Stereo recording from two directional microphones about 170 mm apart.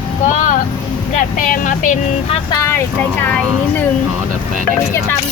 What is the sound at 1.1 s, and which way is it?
Speech, 50° left (ahead or behind).